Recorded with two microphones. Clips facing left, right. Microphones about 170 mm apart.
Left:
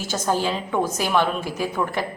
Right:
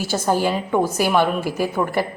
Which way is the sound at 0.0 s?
10° right (ahead or behind).